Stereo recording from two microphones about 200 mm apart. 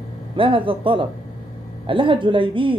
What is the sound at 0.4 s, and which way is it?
Speech, 25° right (ahead or behind).